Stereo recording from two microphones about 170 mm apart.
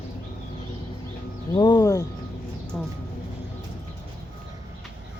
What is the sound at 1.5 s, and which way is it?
Speech, 25° left (ahead or behind).